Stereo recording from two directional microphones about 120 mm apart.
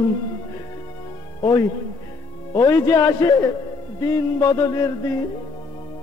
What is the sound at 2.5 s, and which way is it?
A man's voice, 30° left (ahead or behind).